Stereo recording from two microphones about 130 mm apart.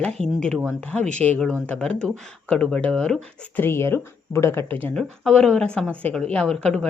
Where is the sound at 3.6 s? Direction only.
20° left (ahead or behind).